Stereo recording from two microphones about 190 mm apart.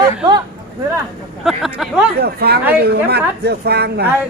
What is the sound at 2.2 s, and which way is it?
A woman's voice, 55° right (ahead or behind).